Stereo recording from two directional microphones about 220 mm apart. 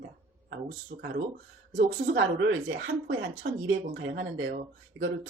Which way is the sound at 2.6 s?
50° right (ahead or behind).